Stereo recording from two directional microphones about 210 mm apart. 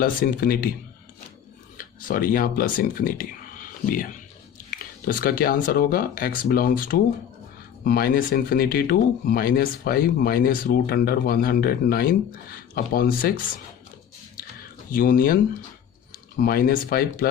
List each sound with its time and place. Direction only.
0.0 s speech: 45° left (ahead or behind)
1.8 s speech: 45° left (ahead or behind)
14.9 s speech: 45° left (ahead or behind)
16.4 s speech: 45° left (ahead or behind)